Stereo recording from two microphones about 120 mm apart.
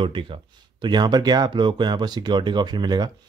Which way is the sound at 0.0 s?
45° right (ahead or behind).